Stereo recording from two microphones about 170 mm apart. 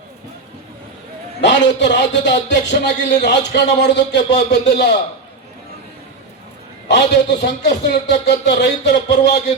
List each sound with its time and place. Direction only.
1.4 s speech: 90° left
6.8 s speech: 90° left